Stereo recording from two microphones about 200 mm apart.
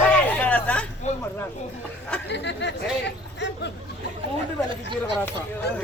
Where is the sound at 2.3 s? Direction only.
60° left (ahead or behind).